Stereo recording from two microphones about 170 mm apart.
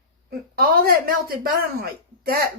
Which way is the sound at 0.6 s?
60° right (ahead or behind).